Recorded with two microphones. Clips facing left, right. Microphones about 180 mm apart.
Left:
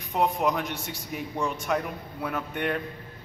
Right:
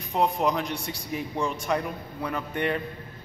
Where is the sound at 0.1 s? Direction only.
Centre (ahead or behind).